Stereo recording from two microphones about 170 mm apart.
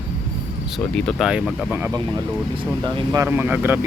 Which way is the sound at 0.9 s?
Centre (ahead or behind).